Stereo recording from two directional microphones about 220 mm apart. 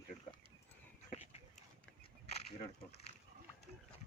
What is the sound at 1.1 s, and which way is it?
Dog, 30° left (ahead or behind).